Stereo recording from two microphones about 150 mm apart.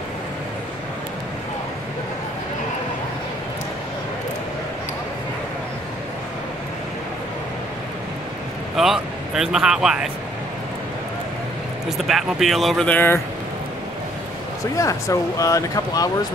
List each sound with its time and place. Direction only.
8.7 s speech: centre (ahead or behind)
12.0 s speech: centre (ahead or behind)
14.8 s speech: 20° left (ahead or behind)